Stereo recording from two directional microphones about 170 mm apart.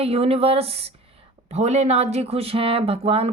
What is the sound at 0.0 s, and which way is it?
Speech, 35° right (ahead or behind).